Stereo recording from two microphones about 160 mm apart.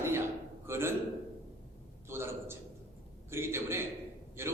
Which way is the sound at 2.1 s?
15° right (ahead or behind).